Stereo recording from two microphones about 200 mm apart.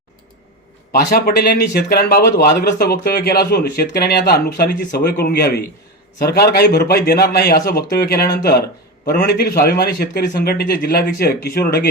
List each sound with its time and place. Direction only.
0.9 s speech: 50° left (ahead or behind)